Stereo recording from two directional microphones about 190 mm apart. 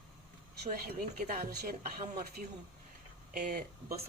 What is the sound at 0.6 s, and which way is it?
Speech, 40° right (ahead or behind).